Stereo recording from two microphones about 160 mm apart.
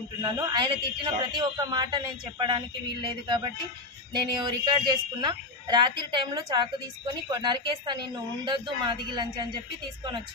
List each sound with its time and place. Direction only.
0.2 s speech: 30° right (ahead or behind)